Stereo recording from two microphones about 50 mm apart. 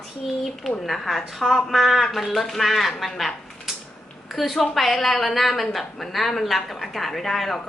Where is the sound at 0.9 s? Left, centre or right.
Centre.